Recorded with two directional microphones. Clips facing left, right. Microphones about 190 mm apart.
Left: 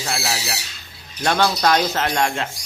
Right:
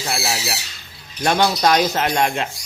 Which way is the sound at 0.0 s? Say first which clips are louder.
Right 1 dB; 15° right (ahead or behind).